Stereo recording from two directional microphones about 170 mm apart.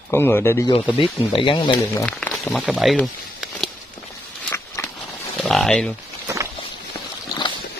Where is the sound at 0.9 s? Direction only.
30° left (ahead or behind).